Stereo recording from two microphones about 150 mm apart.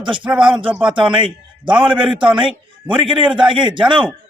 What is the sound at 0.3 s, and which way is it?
Speech, 5° right (ahead or behind).